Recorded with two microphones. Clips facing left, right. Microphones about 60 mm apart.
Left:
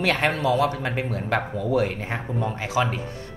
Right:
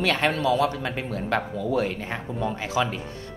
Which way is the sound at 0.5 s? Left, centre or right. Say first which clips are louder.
Left 1 dB; left.